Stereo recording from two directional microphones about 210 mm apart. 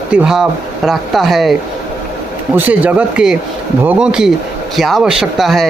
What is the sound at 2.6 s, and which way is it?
Speech, 10° right (ahead or behind).